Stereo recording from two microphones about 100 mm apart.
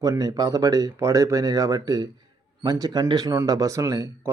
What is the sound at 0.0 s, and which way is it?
Speech, 35° right (ahead or behind).